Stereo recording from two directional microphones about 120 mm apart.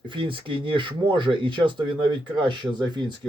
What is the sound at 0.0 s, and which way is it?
Speech, 45° right (ahead or behind).